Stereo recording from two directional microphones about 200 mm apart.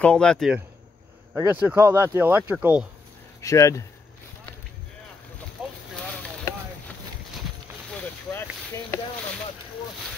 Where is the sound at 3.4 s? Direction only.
15° left (ahead or behind).